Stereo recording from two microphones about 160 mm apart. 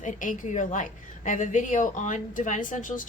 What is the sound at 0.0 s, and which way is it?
A woman's voice, 50° left (ahead or behind).